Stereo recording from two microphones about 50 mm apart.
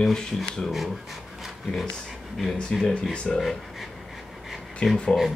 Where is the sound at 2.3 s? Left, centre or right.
Centre.